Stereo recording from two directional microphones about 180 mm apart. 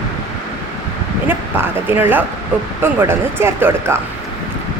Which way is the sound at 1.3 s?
10° right (ahead or behind).